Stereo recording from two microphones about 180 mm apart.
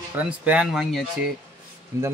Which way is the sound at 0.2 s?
10° right (ahead or behind).